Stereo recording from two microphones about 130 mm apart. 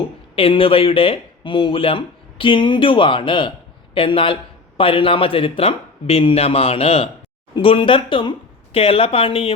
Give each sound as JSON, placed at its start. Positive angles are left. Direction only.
{"t": 0.3, "sound": "speech", "side_deg": 45}
{"t": 7.5, "sound": "speech", "side_deg": 40}